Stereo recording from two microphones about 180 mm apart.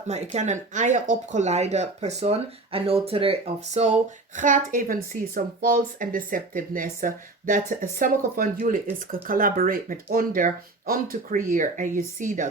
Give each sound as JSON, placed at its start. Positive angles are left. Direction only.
{"t": 0.3, "sound": "speech", "side_deg": -40}
{"t": 4.4, "sound": "speech", "side_deg": -45}